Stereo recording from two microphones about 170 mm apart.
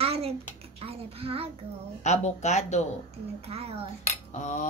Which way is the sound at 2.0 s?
40° left (ahead or behind).